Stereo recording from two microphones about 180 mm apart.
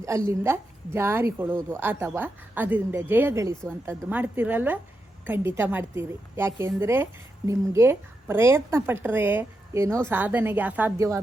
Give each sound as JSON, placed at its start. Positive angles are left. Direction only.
{"t": 0.3, "sound": "a woman's voice", "side_deg": -15}